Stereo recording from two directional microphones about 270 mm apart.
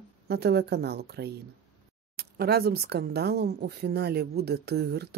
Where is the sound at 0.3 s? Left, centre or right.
Right.